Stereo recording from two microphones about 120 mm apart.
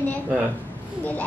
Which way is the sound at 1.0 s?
15° left (ahead or behind).